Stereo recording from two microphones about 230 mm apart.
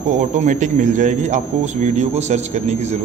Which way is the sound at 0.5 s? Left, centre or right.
Right.